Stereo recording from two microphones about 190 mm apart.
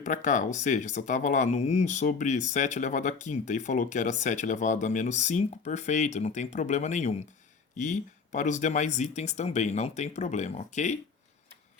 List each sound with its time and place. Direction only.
0.0 s speech: 40° left (ahead or behind)